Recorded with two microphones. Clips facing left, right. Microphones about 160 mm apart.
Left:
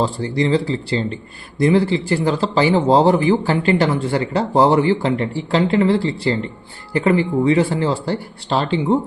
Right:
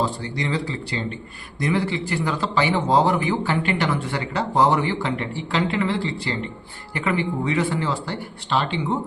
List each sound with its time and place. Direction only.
0.0 s a man's voice: 30° left (ahead or behind)